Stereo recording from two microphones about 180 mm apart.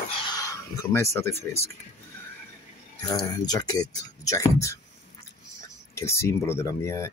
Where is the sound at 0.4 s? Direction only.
20° left (ahead or behind).